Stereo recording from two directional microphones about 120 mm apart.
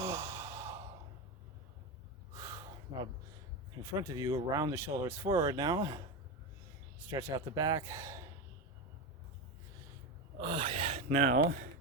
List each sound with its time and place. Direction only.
0.0 s sigh: 25° right (ahead or behind)
2.3 s a sound: 25° right (ahead or behind)
3.8 s speech: 30° right (ahead or behind)
4.7 s speech: 20° right (ahead or behind)
7.1 s speech: 25° right (ahead or behind)
10.4 s gasp: 45° right (ahead or behind); by 11.3 s 60° right (ahead or behind)